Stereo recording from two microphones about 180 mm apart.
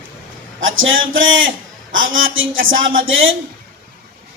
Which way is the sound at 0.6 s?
90° right.